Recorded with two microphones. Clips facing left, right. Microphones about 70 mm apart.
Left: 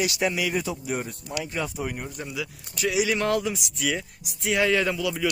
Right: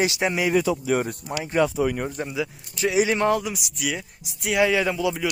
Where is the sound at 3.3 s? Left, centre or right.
Centre.